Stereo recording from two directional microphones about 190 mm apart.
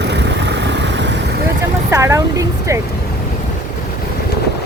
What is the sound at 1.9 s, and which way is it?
Speech, 15° right (ahead or behind).